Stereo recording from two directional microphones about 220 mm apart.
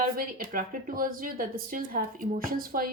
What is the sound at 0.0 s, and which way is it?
Speech, 40° right (ahead or behind).